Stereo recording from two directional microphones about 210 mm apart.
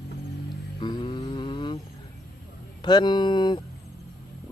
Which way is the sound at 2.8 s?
20° left (ahead or behind).